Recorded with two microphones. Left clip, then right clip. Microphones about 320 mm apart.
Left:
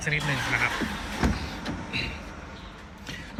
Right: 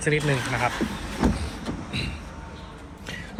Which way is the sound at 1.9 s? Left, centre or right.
Centre.